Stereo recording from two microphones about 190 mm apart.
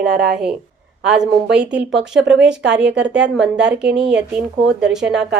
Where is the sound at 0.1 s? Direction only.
60° right (ahead or behind).